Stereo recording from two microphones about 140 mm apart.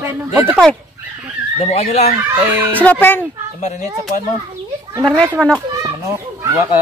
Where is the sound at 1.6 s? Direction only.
50° left (ahead or behind).